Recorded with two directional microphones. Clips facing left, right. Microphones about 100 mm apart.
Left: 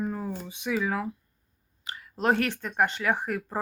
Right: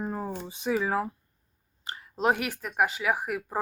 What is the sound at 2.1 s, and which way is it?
Speech, 15° right (ahead or behind).